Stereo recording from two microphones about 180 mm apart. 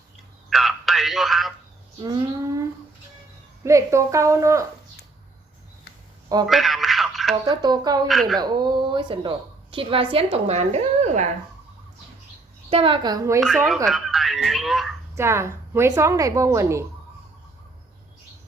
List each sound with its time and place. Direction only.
0.5 s radio: centre (ahead or behind)
2.0 s a sound: 25° right (ahead or behind)
3.6 s a woman's voice: 15° right (ahead or behind)
6.5 s a sound: centre (ahead or behind)
7.4 s speech: 25° right (ahead or behind)
8.0 s a woman's voice: centre (ahead or behind)
8.4 s speech: 25° right (ahead or behind); by 11.3 s 40° right (ahead or behind)
12.7 s speech: 30° right (ahead or behind)
13.8 s speech: centre (ahead or behind)
15.1 s a woman's voice: 15° right (ahead or behind)